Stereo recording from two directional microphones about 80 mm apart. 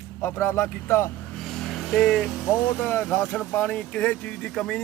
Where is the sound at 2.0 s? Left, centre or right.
Centre.